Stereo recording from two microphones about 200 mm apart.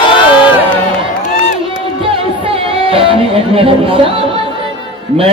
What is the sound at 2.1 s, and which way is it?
Music, 25° right (ahead or behind).